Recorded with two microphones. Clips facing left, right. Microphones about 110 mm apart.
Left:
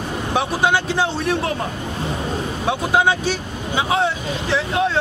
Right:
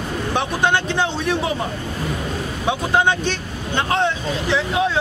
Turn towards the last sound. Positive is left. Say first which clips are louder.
# even
turn(degrees=0)  # may be behind; listen again after turning